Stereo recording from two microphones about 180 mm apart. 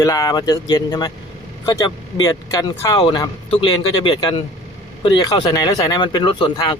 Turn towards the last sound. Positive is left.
turn(degrees=25)  # may be behind; listen again after turning